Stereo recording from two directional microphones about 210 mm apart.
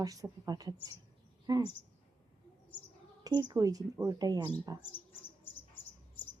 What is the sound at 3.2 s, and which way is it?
A woman's voice, 20° right (ahead or behind).